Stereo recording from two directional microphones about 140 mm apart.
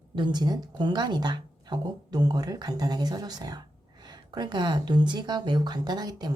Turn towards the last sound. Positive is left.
turn(degrees=-30)  # may be behind; listen again after turning